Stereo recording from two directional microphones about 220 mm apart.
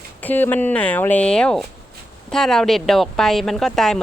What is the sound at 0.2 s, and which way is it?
Speech, 10° left (ahead or behind).